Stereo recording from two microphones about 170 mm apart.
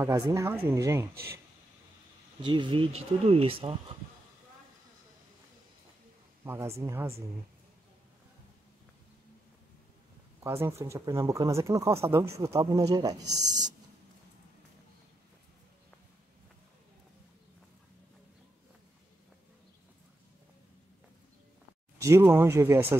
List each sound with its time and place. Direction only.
0.0 s speech: 15° right (ahead or behind)
2.4 s speech: 30° right (ahead or behind)
6.4 s speech: 15° right (ahead or behind)
10.4 s speech: 15° right (ahead or behind)
21.9 s speech: 15° right (ahead or behind)